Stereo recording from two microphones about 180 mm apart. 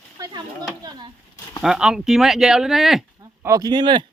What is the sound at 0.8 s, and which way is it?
Chop, 25° right (ahead or behind).